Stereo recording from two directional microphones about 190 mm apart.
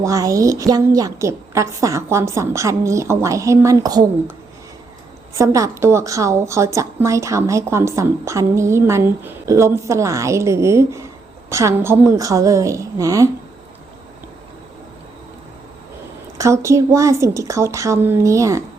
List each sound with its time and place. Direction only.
0.0 s a woman's voice: 15° right (ahead or behind)
5.3 s a woman's voice: 15° right (ahead or behind)
16.4 s a woman's voice: 15° right (ahead or behind)